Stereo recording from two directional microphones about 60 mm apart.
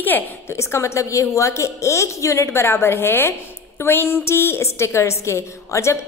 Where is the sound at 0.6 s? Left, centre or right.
Left.